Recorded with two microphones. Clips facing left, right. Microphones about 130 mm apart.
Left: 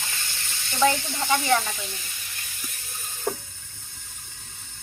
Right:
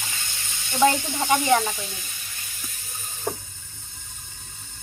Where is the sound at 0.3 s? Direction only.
15° right (ahead or behind).